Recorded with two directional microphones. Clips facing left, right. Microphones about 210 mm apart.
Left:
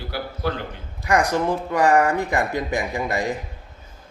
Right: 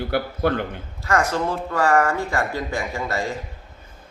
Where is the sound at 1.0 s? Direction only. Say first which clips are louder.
Left 2 dB; 15° left (ahead or behind).